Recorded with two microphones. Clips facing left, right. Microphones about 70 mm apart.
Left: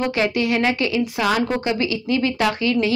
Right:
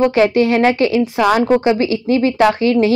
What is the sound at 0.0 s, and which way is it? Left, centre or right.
Speech, right.